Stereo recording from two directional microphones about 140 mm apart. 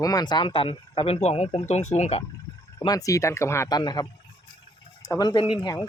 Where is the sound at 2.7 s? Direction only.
25° left (ahead or behind).